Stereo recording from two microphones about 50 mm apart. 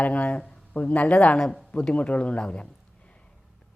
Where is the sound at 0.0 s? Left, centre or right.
Left.